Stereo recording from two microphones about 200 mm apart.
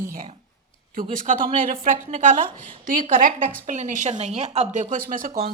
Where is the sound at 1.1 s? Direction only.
40° right (ahead or behind).